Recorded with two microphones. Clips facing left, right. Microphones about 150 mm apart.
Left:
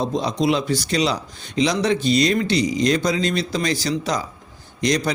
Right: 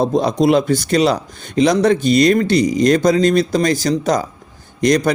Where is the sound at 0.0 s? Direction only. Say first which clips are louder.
Right 6 dB; 55° right (ahead or behind).